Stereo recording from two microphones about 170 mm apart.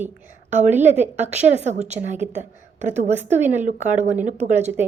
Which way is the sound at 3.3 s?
10° right (ahead or behind).